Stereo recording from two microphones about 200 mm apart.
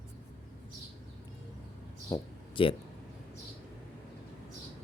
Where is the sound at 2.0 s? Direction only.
20° left (ahead or behind).